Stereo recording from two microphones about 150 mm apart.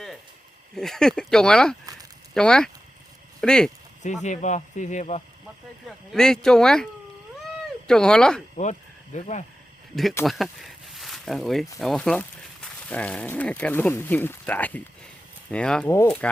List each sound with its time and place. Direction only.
0.8 s speech: 5° left (ahead or behind)
4.0 s speech: 55° left (ahead or behind)
6.1 s speech: 5° left (ahead or behind)
7.9 s speech: 5° left (ahead or behind)
9.1 s speech: 55° left (ahead or behind)
9.9 s speech: centre (ahead or behind)